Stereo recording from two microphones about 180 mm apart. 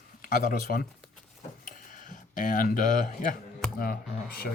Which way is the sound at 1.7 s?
45° left (ahead or behind).